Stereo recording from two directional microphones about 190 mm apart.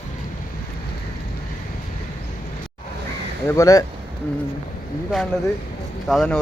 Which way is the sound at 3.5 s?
15° left (ahead or behind).